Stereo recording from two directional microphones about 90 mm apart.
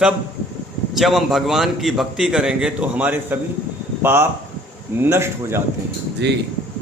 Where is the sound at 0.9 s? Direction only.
Centre (ahead or behind); by 5.6 s 25° right (ahead or behind).